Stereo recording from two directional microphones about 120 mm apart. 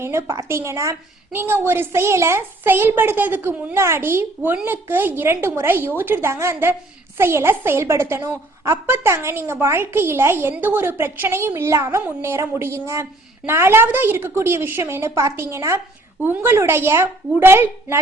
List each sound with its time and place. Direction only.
0.0 s a woman's voice: 20° right (ahead or behind)